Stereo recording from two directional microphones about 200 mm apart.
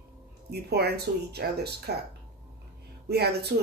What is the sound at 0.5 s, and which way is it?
Speech, 55° right (ahead or behind).